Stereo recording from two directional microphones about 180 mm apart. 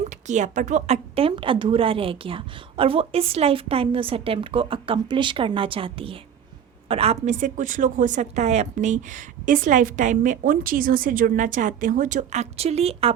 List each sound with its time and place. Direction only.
0.3 s a woman's voice: 40° right (ahead or behind)